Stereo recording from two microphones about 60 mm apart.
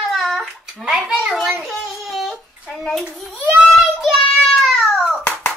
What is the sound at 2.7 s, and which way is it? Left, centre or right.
Hands, centre.